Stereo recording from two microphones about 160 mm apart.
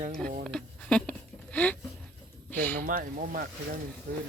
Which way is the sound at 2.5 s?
10° left (ahead or behind).